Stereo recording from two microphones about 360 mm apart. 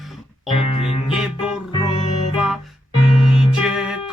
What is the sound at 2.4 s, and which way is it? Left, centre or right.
Music, centre.